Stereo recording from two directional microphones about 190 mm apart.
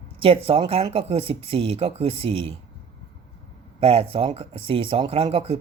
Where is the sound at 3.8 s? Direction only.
30° right (ahead or behind).